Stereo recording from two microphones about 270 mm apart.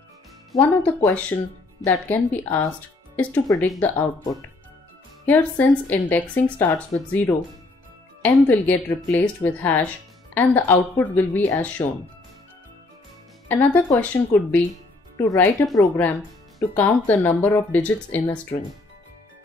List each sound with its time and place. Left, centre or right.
0.5 s speech: centre
5.2 s speech: centre
13.5 s speech: centre